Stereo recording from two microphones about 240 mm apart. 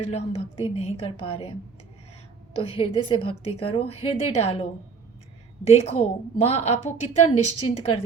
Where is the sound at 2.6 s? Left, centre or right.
Left.